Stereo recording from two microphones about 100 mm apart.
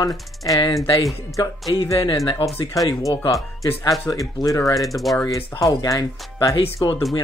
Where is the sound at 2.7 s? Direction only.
35° left (ahead or behind).